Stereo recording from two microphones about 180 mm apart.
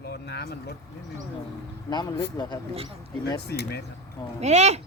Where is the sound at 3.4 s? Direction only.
65° left (ahead or behind).